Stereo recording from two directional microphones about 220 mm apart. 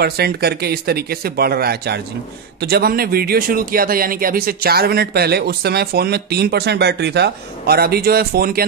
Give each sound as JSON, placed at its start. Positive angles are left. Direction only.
{"t": 0.0, "sound": "a man's voice", "side_deg": -45}